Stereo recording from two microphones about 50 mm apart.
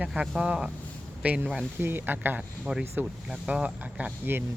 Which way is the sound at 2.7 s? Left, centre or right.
Right.